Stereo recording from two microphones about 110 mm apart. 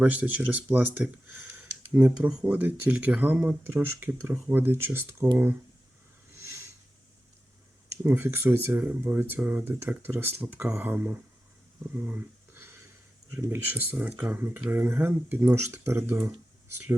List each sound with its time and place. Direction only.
0.0 s speech: 15° right (ahead or behind)
8.0 s speech: 20° right (ahead or behind)
11.9 s a sound: 20° right (ahead or behind)
13.3 s speech: 20° right (ahead or behind)